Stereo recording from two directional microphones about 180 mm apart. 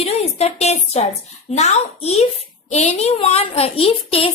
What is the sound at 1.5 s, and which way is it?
Speech, 40° left (ahead or behind).